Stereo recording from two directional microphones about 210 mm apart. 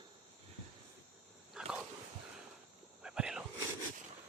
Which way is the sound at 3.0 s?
5° right (ahead or behind).